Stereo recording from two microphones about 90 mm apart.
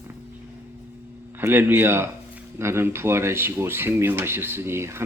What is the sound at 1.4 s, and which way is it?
A man's voice, 25° right (ahead or behind).